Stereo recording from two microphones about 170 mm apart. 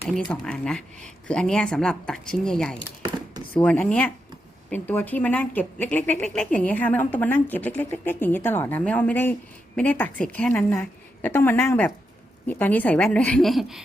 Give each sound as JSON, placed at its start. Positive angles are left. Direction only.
{"t": 0.3, "sound": "speech", "side_deg": 5}
{"t": 3.0, "sound": "a sound", "side_deg": -25}
{"t": 3.5, "sound": "a woman's voice", "side_deg": 10}